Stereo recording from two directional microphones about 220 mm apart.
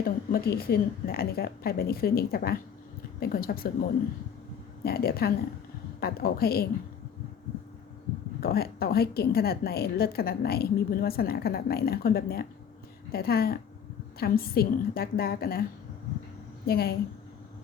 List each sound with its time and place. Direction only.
0.0 s a woman's voice: 40° left (ahead or behind)
4.8 s a woman's voice: 45° left (ahead or behind)
8.4 s a woman's voice: 45° left (ahead or behind)
16.6 s a woman's voice: 45° left (ahead or behind)